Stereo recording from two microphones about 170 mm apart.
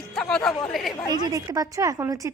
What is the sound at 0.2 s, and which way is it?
Speech, 5° left (ahead or behind).